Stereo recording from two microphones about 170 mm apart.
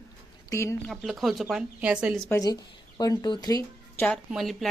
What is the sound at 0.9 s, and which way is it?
A woman's voice, centre (ahead or behind).